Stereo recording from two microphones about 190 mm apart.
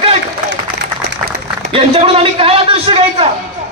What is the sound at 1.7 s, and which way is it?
A man's voice, 30° right (ahead or behind).